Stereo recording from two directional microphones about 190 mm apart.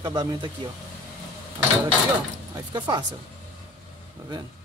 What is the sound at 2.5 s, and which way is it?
Speech, 20° right (ahead or behind).